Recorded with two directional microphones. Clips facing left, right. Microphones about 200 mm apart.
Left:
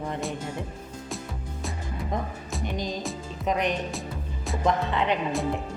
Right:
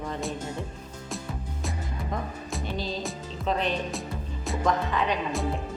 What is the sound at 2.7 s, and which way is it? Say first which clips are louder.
A woman's voice: left 1 dB; 15° left (ahead or behind).